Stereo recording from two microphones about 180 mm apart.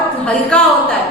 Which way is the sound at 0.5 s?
5° left (ahead or behind).